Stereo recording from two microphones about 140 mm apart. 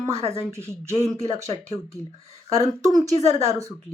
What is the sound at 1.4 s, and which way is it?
Speech, 20° right (ahead or behind).